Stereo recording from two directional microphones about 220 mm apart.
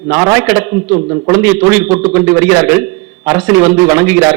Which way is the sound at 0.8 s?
25° right (ahead or behind).